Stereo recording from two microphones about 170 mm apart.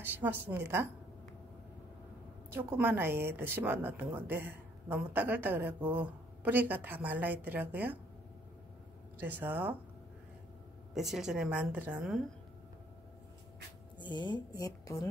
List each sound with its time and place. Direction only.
0.0 s a woman's voice: 10° right (ahead or behind)
2.5 s a woman's voice: 10° right (ahead or behind)
9.2 s a woman's voice: 10° right (ahead or behind)
11.0 s a woman's voice: centre (ahead or behind)
13.9 s a woman's voice: 25° left (ahead or behind)